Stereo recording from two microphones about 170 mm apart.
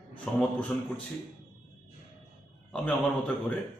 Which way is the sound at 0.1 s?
5° left (ahead or behind).